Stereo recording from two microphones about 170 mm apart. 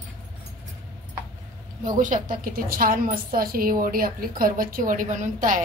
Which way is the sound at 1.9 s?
50° right (ahead or behind).